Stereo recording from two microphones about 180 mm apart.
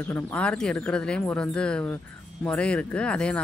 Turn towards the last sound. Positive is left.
turn(degrees=5)  # may be behind; listen again after turning